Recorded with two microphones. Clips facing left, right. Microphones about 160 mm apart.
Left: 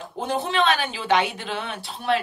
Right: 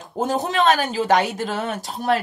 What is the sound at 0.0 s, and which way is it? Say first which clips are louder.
Speech: right 4 dB; 45° right (ahead or behind).